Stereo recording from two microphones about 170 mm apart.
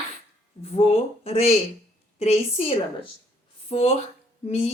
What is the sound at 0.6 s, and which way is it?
A woman's voice, 35° left (ahead or behind).